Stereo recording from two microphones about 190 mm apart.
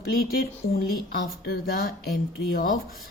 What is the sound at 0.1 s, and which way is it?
A woman's voice, 50° left (ahead or behind).